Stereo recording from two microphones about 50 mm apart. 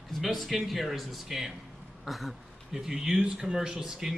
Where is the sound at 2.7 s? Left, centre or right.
Centre.